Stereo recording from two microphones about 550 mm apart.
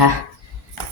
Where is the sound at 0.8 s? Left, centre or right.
Right.